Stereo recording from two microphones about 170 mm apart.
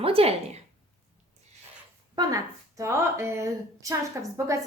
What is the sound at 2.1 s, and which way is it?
A woman's voice, 20° right (ahead or behind).